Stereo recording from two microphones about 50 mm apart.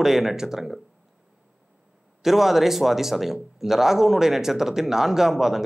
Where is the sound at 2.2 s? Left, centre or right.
Centre.